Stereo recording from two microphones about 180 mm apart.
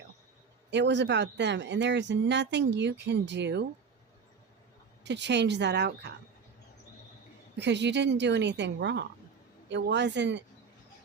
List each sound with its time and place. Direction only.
0.7 s speech: 75° right (ahead or behind)
5.0 s speech: 75° right (ahead or behind)
7.6 s a woman's voice: 75° right (ahead or behind)